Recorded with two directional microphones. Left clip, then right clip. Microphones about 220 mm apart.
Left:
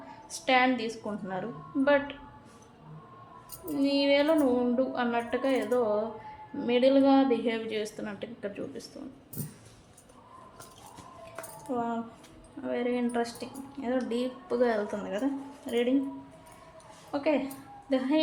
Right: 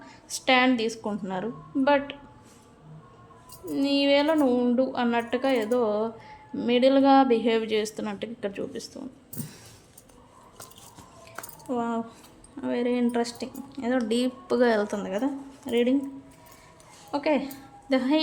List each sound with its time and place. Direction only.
0.3 s a woman's voice: 40° right (ahead or behind)
3.8 s a woman's voice: 35° right (ahead or behind)
11.7 s speech: 40° right (ahead or behind)
17.1 s speech: 45° right (ahead or behind)